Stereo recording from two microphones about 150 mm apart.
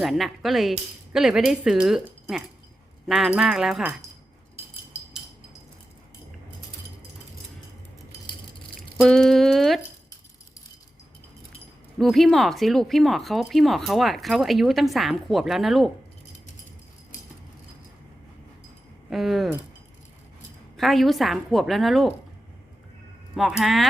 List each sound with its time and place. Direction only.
0.0 s speech: centre (ahead or behind)
4.9 s a sound: 15° left (ahead or behind)
9.0 s speech: 5° left (ahead or behind)
11.9 s speech: centre (ahead or behind)
19.1 s speech: centre (ahead or behind)
20.7 s speech: centre (ahead or behind)
23.3 s speech: 5° right (ahead or behind)